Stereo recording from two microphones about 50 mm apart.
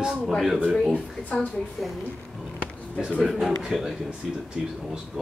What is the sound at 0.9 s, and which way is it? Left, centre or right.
Speech, left.